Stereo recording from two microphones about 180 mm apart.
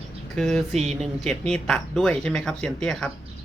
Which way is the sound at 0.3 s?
Centre (ahead or behind).